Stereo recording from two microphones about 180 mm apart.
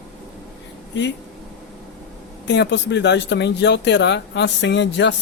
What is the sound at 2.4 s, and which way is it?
Speech, 75° left (ahead or behind).